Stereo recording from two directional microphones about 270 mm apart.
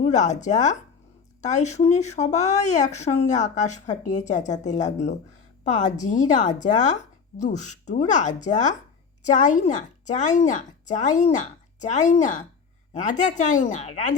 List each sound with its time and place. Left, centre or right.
0.0 s a woman's voice: left